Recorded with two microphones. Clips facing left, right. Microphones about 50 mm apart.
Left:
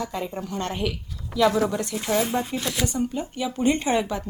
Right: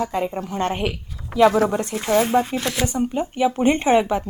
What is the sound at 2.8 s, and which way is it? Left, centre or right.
A woman's voice, right.